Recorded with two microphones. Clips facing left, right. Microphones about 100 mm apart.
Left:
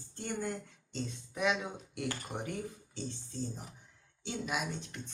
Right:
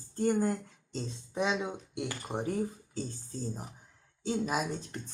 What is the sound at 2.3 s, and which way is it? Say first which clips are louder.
Speech: right 7 dB; 35° right (ahead or behind).